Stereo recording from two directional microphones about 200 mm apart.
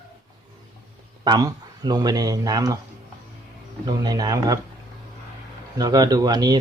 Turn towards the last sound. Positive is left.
turn(degrees=-20)  # may be behind; listen again after turning